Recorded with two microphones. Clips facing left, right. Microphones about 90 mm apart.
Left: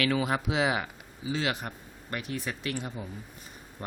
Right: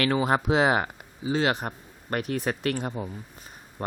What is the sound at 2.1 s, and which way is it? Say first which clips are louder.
Speech: right 7 dB; 50° right (ahead or behind).